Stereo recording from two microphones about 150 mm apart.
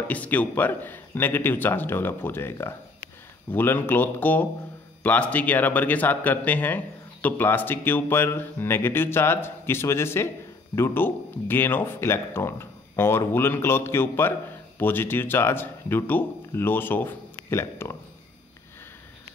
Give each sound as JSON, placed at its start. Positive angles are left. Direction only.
{"t": 0.1, "sound": "speech", "side_deg": 10}